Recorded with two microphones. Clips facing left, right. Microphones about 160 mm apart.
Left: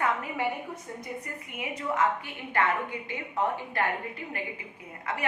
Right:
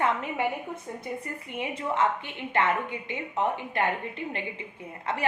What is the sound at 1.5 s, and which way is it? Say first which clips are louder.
A woman's voice: right 1 dB; 30° right (ahead or behind).